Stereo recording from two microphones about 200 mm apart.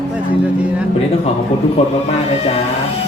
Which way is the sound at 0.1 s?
5° right (ahead or behind).